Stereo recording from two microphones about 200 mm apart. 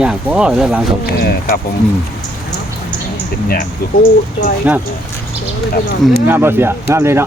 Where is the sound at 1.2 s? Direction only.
50° left (ahead or behind).